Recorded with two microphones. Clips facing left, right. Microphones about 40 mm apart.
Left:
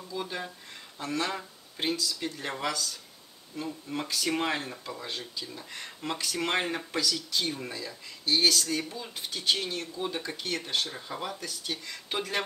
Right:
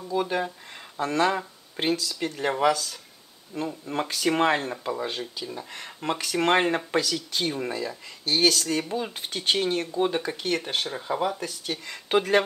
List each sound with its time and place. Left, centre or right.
0.1 s speech: right
2.5 s speech: right
3.5 s speech: right
10.9 s speech: centre
12.1 s speech: right